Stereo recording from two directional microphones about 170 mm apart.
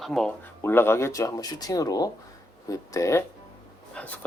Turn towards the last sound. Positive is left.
turn(degrees=5)  # may be behind; listen again after turning